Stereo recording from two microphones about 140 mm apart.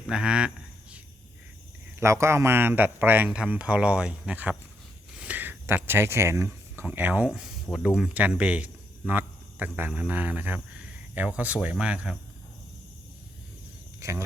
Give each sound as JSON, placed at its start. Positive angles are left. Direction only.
{"t": 0.1, "sound": "a sound", "side_deg": -5}
{"t": 2.0, "sound": "a man's voice", "side_deg": -20}
{"t": 14.0, "sound": "speech", "side_deg": -20}